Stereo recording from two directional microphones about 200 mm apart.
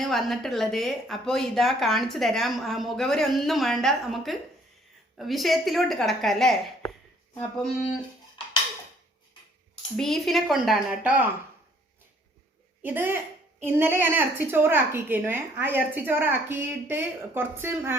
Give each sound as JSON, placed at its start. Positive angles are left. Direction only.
{"t": 0.0, "sound": "speech", "side_deg": 0}
{"t": 8.4, "sound": "music", "side_deg": 25}
{"t": 10.0, "sound": "speech", "side_deg": 0}
{"t": 12.8, "sound": "a woman's voice", "side_deg": -10}